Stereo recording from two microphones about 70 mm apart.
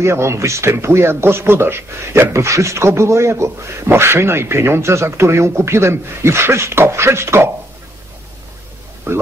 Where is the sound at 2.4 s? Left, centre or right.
Right.